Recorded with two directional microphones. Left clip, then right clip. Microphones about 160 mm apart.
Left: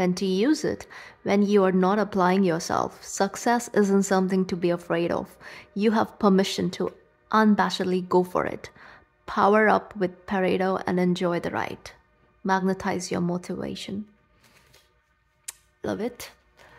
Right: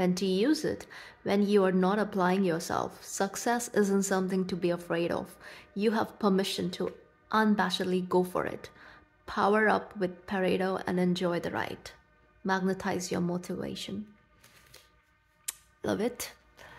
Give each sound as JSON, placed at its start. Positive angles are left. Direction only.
{"t": 0.0, "sound": "a woman's voice", "side_deg": 20}
{"t": 15.4, "sound": "camera", "side_deg": 5}